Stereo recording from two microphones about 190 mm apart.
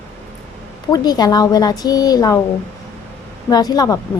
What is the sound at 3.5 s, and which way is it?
Speech, 20° left (ahead or behind).